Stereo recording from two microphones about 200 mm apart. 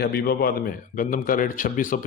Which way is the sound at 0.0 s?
50° left (ahead or behind).